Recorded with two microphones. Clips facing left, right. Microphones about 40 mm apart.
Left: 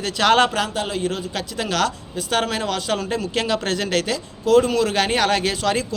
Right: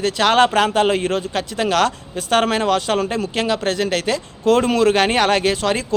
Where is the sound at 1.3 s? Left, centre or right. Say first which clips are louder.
Right 5 dB; right.